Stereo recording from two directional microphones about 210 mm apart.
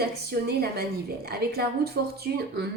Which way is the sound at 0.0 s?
50° right (ahead or behind).